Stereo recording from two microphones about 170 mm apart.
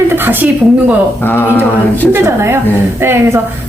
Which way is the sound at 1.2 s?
10° left (ahead or behind).